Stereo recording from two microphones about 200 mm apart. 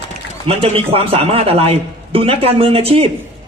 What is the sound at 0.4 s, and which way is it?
Speech, 30° right (ahead or behind).